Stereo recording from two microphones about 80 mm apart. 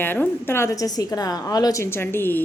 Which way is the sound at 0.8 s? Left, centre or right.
Left.